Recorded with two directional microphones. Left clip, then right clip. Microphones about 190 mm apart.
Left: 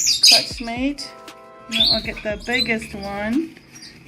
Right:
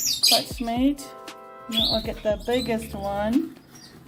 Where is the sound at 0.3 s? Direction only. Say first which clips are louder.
Left 6 dB; 15° right (ahead or behind).